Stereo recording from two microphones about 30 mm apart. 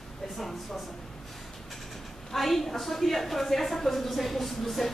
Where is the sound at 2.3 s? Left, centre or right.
Centre.